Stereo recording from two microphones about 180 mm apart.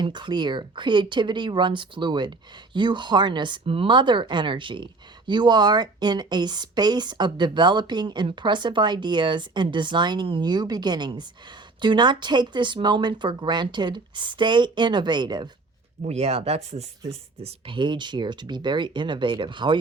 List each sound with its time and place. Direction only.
0.0 s speech: 25° right (ahead or behind)
16.0 s speech: 35° right (ahead or behind)